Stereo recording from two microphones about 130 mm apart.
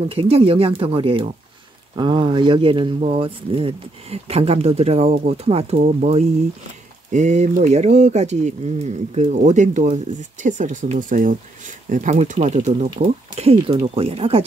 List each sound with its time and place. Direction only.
0.1 s speech: 45° right (ahead or behind)
5.8 s speech: 65° right (ahead or behind)
13.4 s speech: 50° right (ahead or behind)